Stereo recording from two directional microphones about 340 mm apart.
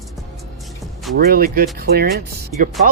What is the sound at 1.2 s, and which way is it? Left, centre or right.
Speech, right.